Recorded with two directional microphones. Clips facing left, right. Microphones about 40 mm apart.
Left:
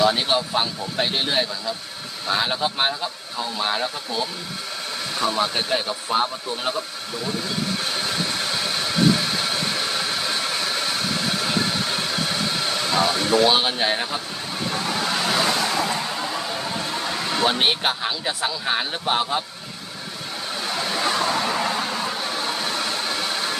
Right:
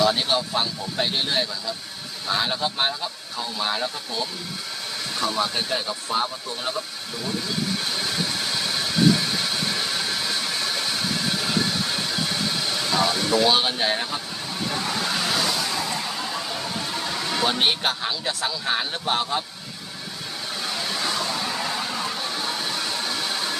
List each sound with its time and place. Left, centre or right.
0.0 s speech: centre
12.9 s speech: centre
14.7 s vehicle: centre
15.4 s vehicle: left
16.1 s speech: centre
20.7 s vehicle: centre
20.9 s a sound: left
21.2 s vehicle: left
21.7 s a sound: centre